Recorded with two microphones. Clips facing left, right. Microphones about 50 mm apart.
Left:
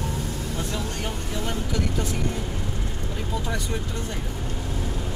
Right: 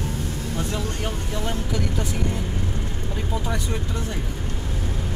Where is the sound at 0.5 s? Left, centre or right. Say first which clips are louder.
Right 4 dB; centre.